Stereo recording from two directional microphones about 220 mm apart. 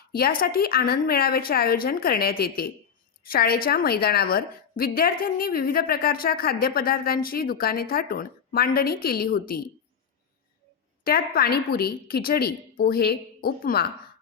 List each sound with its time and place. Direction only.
0.1 s a woman's voice: 40° left (ahead or behind)
11.0 s a woman's voice: 45° left (ahead or behind)